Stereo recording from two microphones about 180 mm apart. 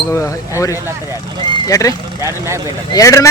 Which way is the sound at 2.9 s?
20° left (ahead or behind).